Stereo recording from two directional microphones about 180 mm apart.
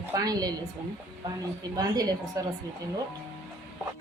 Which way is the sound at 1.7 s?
20° right (ahead or behind).